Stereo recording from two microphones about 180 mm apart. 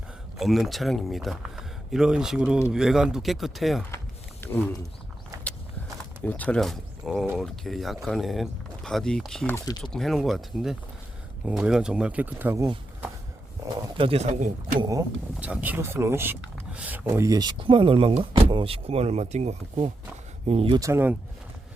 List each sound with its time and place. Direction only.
0.3 s speech: centre (ahead or behind)
4.4 s speech: 10° left (ahead or behind)
6.2 s speech: 10° left (ahead or behind)
9.6 s speech: 25° left (ahead or behind)
9.9 s speech: centre (ahead or behind)
13.9 s speech: 30° right (ahead or behind)
14.8 s speech: 20° right (ahead or behind)
15.4 s speech: 10° right (ahead or behind); by 20.7 s 35° right (ahead or behind)
20.7 s speech: 15° right (ahead or behind)